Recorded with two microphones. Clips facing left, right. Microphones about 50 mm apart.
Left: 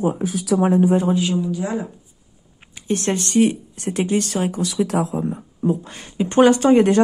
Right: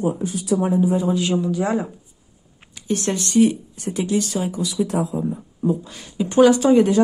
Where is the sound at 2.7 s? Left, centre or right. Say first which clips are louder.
Left 1 dB; left.